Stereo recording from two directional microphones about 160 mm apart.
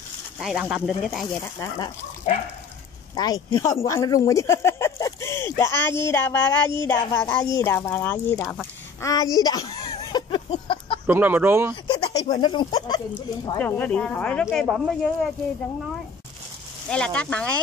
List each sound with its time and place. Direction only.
0.4 s speech: 5° right (ahead or behind)
1.4 s a child's voice: 20° left (ahead or behind)
3.2 s a child's voice: 25° left (ahead or behind)
9.7 s a sound: 30° left (ahead or behind)
11.1 s speech: 10° right (ahead or behind)
11.7 s speech: 25° left (ahead or behind)
13.6 s speech: 10° left (ahead or behind)
16.9 s speech: 5° left (ahead or behind)